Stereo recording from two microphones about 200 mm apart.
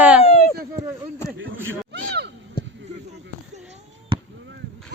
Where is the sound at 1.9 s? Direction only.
60° right (ahead or behind).